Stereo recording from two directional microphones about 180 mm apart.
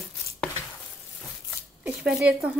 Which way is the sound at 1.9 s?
5° right (ahead or behind).